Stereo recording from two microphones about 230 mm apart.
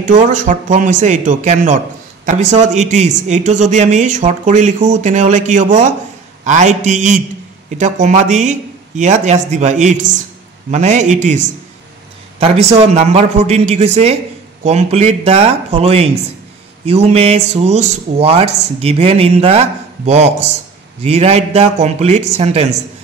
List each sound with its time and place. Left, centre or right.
0.0 s speech: right